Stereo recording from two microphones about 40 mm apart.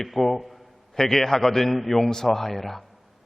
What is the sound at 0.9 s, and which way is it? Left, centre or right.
A man's voice, centre.